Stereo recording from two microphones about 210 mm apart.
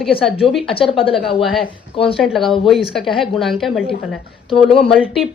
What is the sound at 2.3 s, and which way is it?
A woman's voice, centre (ahead or behind).